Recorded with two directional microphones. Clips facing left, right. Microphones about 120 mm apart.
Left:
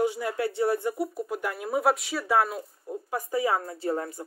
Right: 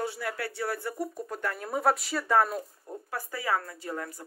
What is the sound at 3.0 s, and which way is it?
Speech, 20° left (ahead or behind).